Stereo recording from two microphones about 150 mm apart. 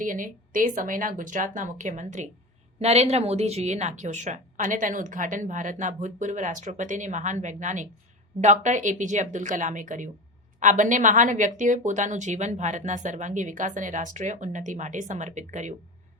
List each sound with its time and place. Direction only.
0.0 s a woman's voice: 65° right (ahead or behind)